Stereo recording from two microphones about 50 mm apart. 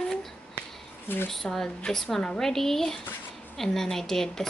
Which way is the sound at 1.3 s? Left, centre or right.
Centre.